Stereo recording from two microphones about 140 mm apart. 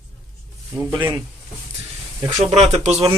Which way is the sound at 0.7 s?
15° right (ahead or behind).